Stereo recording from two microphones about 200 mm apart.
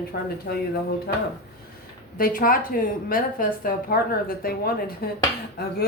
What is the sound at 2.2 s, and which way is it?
A woman's voice, 45° left (ahead or behind).